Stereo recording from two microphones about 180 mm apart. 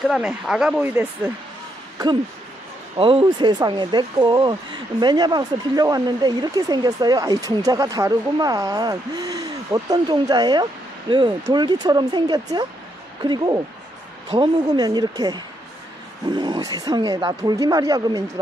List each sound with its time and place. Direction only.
0.0 s speech: centre (ahead or behind)
3.0 s speech: 30° right (ahead or behind)